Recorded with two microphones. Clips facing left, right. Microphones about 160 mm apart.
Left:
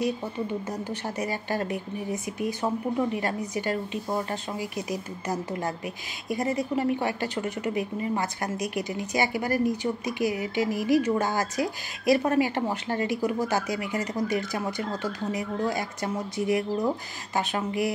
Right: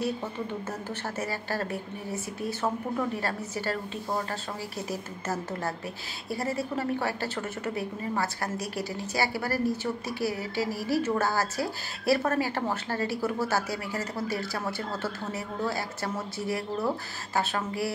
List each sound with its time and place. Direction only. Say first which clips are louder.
0.0 s a woman's voice: left 3 dB; 15° left (ahead or behind)
3.2 s a woman's voice: left 3 dB; 15° left (ahead or behind)